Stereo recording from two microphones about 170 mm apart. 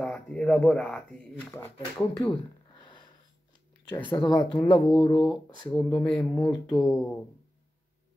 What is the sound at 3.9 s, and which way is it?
Speech, 10° left (ahead or behind).